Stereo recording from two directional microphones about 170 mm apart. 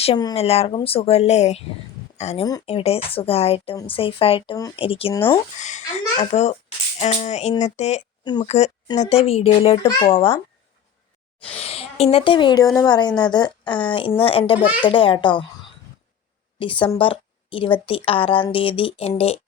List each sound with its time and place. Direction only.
0.0 s a woman's voice: 25° left (ahead or behind)
5.1 s a woman's voice: 20° left (ahead or behind)
5.5 s a child's voice: 45° left (ahead or behind)
8.2 s a woman's voice: 25° left (ahead or behind)
8.4 s speech: 40° left (ahead or behind)
11.4 s a woman's voice: 35° left (ahead or behind)
16.6 s a woman's voice: 30° left (ahead or behind)